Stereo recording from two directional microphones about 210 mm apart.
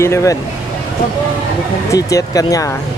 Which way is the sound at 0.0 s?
15° left (ahead or behind).